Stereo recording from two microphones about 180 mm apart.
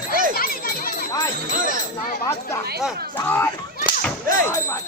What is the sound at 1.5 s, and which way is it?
Speech, 50° right (ahead or behind).